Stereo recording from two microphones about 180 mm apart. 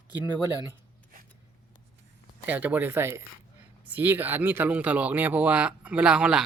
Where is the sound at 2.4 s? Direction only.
10° right (ahead or behind).